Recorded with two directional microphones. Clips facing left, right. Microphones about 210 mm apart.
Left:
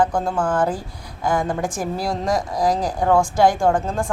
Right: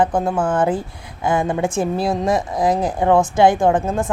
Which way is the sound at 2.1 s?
5° right (ahead or behind).